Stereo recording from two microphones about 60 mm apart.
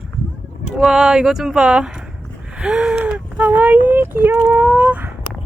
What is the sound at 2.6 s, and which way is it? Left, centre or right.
Gasp, centre.